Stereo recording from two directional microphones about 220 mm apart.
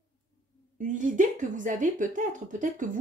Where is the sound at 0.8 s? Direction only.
35° right (ahead or behind).